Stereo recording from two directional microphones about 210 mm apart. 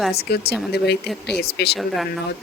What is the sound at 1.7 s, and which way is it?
Speech, centre (ahead or behind).